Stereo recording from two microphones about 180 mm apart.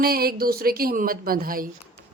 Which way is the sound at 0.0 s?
55° right (ahead or behind).